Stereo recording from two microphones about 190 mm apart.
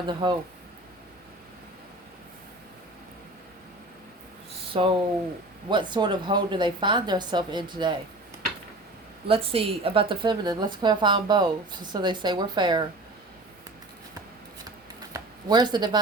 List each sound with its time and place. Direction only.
0.1 s a woman's voice: 25° right (ahead or behind)
4.7 s a woman's voice: 25° right (ahead or behind)
9.2 s a woman's voice: 30° right (ahead or behind)
15.1 s a sound: 20° right (ahead or behind)